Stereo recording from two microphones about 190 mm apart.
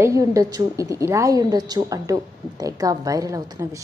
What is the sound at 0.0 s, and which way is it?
A woman's voice, 15° right (ahead or behind).